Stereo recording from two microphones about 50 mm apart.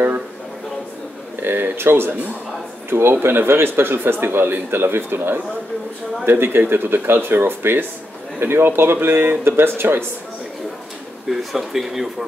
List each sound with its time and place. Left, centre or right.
1.4 s speech: right
11.2 s speech: centre